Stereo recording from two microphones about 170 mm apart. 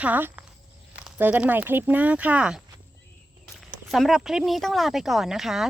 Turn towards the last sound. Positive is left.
turn(degrees=0)  # may be behind; listen again after turning